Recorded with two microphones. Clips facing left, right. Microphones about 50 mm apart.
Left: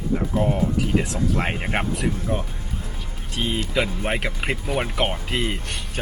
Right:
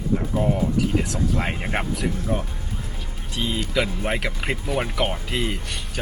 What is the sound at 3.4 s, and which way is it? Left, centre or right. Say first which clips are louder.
Speech: left 1 dB; left.